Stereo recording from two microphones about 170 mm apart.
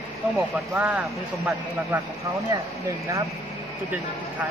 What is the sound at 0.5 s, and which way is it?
Speech, 5° right (ahead or behind).